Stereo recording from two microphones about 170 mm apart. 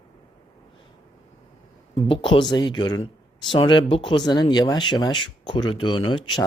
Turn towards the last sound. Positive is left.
turn(degrees=25)  # may be behind; listen again after turning